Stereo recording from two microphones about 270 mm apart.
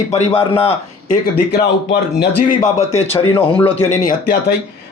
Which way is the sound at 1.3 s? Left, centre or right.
Left.